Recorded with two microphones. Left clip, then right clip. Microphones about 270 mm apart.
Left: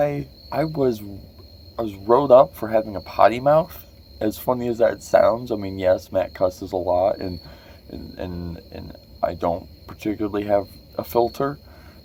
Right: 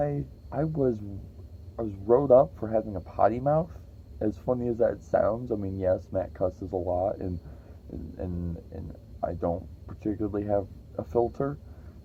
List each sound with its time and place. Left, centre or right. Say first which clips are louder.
0.0 s speech: left 8 dB; centre